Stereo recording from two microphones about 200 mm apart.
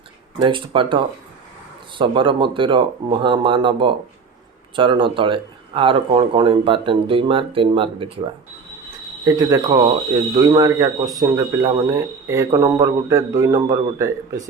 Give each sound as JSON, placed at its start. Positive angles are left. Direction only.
{"t": 0.3, "sound": "speech", "side_deg": -25}
{"t": 9.2, "sound": "speech", "side_deg": -20}